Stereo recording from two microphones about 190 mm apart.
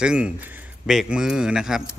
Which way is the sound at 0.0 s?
5° right (ahead or behind).